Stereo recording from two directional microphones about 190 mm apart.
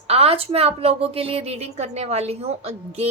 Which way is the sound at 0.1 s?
30° right (ahead or behind).